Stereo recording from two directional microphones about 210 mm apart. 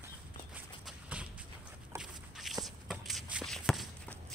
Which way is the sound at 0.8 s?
5° right (ahead or behind).